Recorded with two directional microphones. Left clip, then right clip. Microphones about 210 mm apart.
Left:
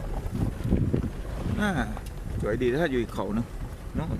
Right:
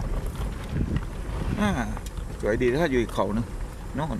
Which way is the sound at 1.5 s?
5° left (ahead or behind).